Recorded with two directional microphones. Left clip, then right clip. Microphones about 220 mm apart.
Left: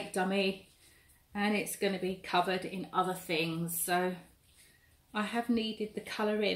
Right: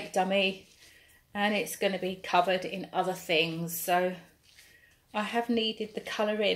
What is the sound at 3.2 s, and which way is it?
Speech, 25° right (ahead or behind).